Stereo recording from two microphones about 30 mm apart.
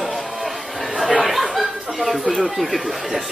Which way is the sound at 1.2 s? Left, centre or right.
Centre.